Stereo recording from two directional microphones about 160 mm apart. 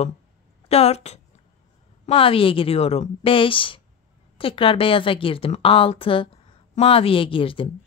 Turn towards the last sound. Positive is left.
turn(degrees=35)  # may be behind; listen again after turning